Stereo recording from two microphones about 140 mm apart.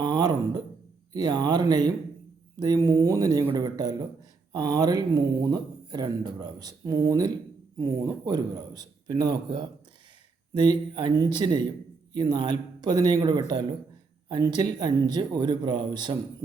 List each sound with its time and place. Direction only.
0.0 s a man's voice: 30° right (ahead or behind)